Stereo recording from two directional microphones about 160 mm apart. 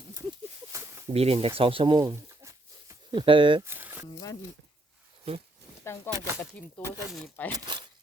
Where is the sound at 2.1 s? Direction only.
20° right (ahead or behind).